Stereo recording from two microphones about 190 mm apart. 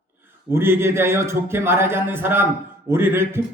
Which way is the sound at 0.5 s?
10° right (ahead or behind).